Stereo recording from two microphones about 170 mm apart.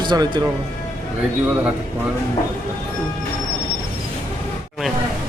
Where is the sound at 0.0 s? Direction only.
25° right (ahead or behind).